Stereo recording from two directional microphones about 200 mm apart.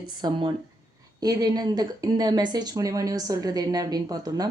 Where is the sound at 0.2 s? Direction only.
20° right (ahead or behind).